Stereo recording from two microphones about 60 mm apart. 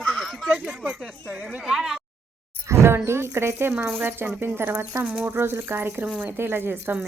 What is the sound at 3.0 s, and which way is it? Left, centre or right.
A woman's voice, right.